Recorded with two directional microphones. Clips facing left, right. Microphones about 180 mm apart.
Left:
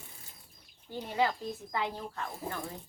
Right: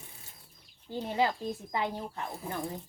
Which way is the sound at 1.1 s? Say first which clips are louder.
Right 1 dB; 20° right (ahead or behind).